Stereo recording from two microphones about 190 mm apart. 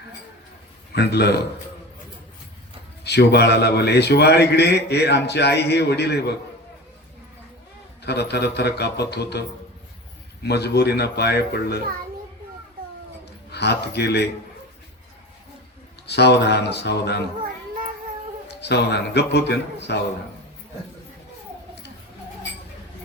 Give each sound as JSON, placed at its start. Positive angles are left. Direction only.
{"t": 0.9, "sound": "a man's voice", "side_deg": 60}
{"t": 3.0, "sound": "a man's voice", "side_deg": 60}
{"t": 8.0, "sound": "a man's voice", "side_deg": 60}
{"t": 10.4, "sound": "a man's voice", "side_deg": 60}
{"t": 13.5, "sound": "a man's voice", "side_deg": 60}
{"t": 16.0, "sound": "a man's voice", "side_deg": 60}
{"t": 18.4, "sound": "a man's voice", "side_deg": 60}